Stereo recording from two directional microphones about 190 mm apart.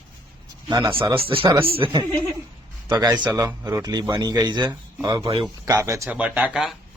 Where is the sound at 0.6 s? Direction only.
25° right (ahead or behind).